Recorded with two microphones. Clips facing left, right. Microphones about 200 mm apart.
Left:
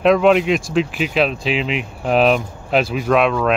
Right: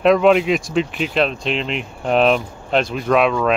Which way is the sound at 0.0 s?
Centre (ahead or behind).